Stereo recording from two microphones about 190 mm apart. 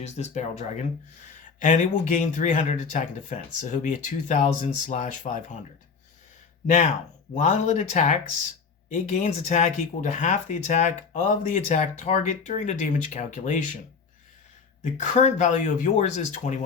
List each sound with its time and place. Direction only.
0.0 s speech: 35° left (ahead or behind)
6.7 s speech: 40° left (ahead or behind)
14.9 s speech: 35° left (ahead or behind)